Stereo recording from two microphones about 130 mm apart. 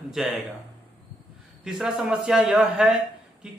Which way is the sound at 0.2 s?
5° right (ahead or behind).